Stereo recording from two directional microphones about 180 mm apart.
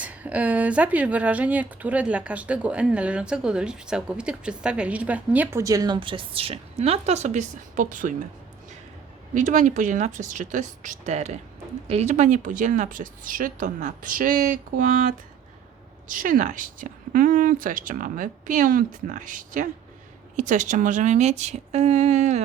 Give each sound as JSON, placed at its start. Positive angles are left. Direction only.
{"t": 0.0, "sound": "speech", "side_deg": -10}
{"t": 9.3, "sound": "a woman's voice", "side_deg": -45}